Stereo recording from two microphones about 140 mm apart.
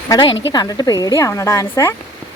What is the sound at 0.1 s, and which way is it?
A woman's voice, 30° left (ahead or behind).